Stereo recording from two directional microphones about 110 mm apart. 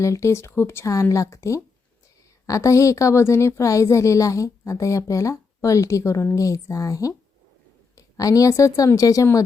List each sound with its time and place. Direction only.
0.0 s a woman's voice: 30° left (ahead or behind)